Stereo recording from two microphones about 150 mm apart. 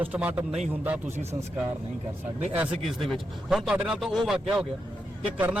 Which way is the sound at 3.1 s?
Centre (ahead or behind).